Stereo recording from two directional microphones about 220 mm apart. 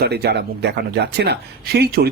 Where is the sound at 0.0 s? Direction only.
50° right (ahead or behind).